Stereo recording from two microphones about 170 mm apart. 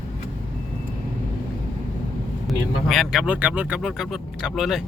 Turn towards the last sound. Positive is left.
turn(degrees=0)  # may be behind; listen again after turning